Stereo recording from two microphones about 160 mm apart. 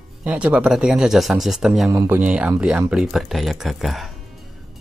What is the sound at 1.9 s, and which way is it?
Speech, 15° right (ahead or behind).